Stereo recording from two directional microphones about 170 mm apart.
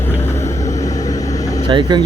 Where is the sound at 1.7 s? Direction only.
25° right (ahead or behind).